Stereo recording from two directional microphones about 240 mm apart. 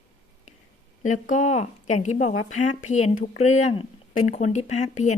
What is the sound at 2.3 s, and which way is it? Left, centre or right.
Speech, left.